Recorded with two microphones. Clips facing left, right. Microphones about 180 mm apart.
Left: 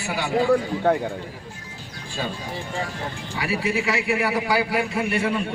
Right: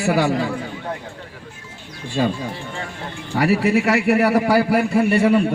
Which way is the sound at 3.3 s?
65° right (ahead or behind).